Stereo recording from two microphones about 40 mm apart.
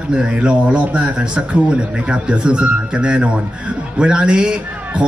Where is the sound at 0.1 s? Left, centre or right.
Right.